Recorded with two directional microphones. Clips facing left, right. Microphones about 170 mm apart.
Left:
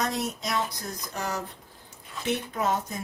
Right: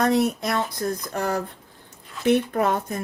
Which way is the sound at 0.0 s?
60° right (ahead or behind).